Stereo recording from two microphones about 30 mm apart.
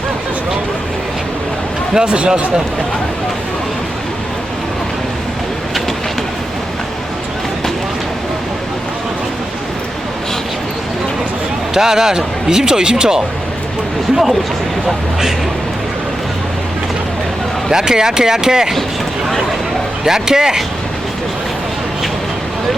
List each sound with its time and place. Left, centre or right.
2.0 s speech: right
11.7 s speech: centre
17.7 s speech: right
20.1 s speech: centre